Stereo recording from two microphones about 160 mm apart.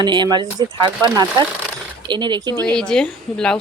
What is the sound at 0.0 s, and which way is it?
Speech, 30° right (ahead or behind).